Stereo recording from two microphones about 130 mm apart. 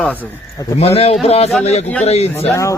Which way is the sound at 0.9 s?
50° left (ahead or behind).